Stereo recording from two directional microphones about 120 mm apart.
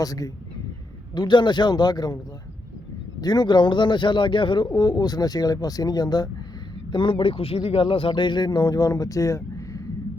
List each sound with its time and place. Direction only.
0.0 s a man's voice: 30° left (ahead or behind)
3.2 s a man's voice: 35° left (ahead or behind)
6.9 s a man's voice: 45° left (ahead or behind); by 9.8 s 25° left (ahead or behind)